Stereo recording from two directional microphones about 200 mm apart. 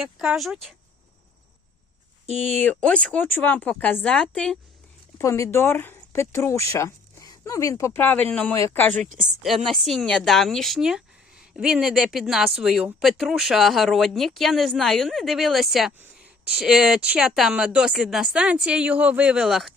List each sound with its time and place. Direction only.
0.0 s speech: 5° right (ahead or behind)
2.2 s speech: 35° right (ahead or behind)
2.6 s speech: 5° left (ahead or behind)
5.1 s speech: 15° left (ahead or behind)
9.0 s speech: 40° right (ahead or behind)
9.4 s speech: centre (ahead or behind)